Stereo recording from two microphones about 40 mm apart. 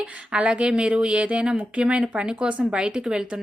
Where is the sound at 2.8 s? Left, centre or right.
Centre.